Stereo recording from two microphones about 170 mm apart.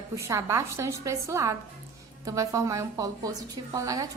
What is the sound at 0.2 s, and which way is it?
A woman's voice, 15° right (ahead or behind).